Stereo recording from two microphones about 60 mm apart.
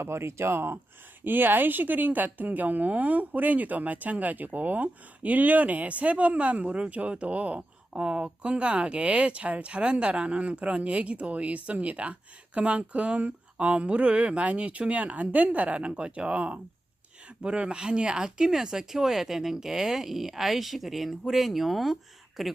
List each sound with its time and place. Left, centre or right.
0.0 s speech: right; by 22.5 s centre